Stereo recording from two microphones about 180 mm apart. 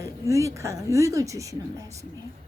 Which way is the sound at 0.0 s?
15° right (ahead or behind).